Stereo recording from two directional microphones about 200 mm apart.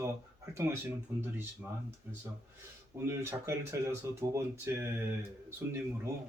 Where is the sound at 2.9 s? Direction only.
15° right (ahead or behind).